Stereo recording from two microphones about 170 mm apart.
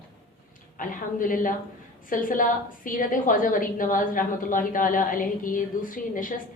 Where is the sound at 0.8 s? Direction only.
55° left (ahead or behind).